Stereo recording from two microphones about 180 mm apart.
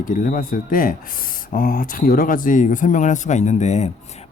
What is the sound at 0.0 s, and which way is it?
Speech, 50° left (ahead or behind).